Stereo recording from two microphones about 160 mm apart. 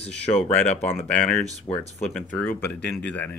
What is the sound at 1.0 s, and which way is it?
Speech, 5° left (ahead or behind).